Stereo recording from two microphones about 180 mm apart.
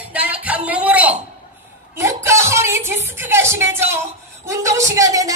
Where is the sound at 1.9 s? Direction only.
15° right (ahead or behind).